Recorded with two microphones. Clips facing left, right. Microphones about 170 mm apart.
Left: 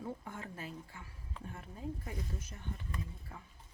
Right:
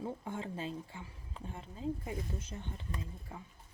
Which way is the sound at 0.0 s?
25° right (ahead or behind).